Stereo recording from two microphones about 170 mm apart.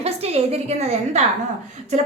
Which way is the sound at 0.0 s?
35° right (ahead or behind).